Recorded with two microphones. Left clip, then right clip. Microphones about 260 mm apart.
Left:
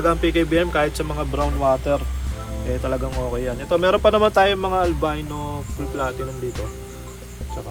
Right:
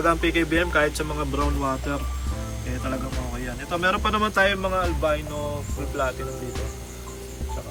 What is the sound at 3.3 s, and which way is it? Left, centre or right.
Speech, centre.